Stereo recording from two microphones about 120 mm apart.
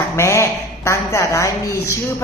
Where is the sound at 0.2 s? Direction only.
25° left (ahead or behind).